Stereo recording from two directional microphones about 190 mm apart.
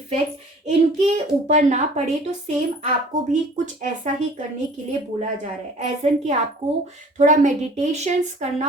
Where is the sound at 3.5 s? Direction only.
40° right (ahead or behind).